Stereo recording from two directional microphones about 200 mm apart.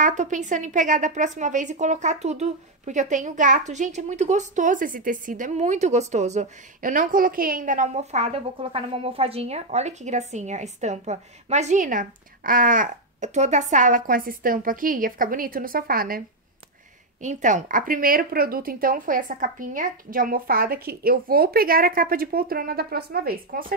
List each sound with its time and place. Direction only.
0.0 s a woman's voice: 40° right (ahead or behind)